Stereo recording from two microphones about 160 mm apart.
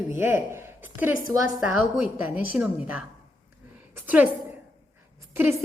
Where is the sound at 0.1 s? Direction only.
15° right (ahead or behind).